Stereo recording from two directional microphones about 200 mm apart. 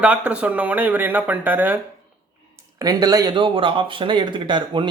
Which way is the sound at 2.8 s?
20° right (ahead or behind).